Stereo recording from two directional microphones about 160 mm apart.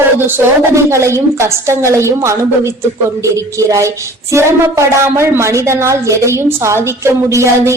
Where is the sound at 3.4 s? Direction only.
20° right (ahead or behind).